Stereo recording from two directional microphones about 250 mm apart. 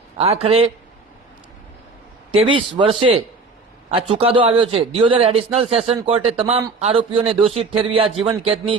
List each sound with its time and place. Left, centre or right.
0.2 s a man's voice: right
2.3 s a man's voice: right